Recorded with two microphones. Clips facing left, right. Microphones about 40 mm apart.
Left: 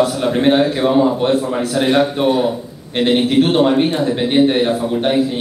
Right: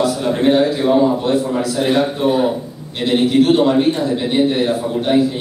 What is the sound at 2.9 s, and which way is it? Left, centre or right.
A man's voice, left.